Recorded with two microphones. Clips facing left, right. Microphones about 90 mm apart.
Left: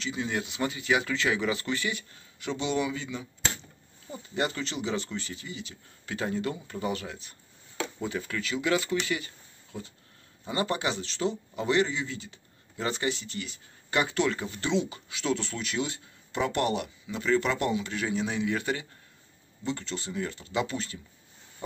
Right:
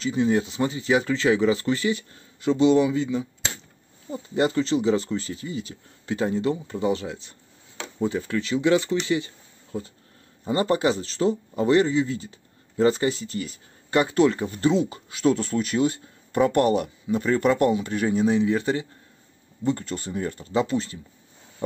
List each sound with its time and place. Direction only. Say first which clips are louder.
0.0 s speech: right 10 dB; 35° right (ahead or behind)
19.6 s speech: right 7 dB; 45° right (ahead or behind)